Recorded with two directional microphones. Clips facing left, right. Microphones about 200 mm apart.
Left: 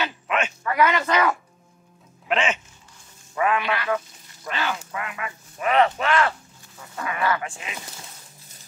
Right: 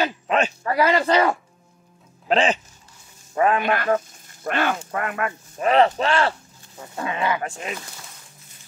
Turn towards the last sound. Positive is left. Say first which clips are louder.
# right 5 dB
turn(degrees=-45)  # may be behind; listen again after turning